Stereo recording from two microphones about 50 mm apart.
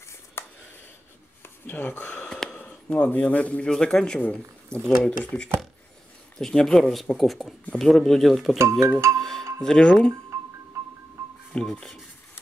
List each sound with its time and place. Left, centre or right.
0.4 s a sound: left
1.7 s speech: left
2.2 s gasp: centre
2.6 s speech: left
3.6 s speech: centre
4.2 s speech: left
6.3 s speech: centre
8.5 s speech: right
9.6 s speech: centre
10.8 s music: right
11.5 s speech: centre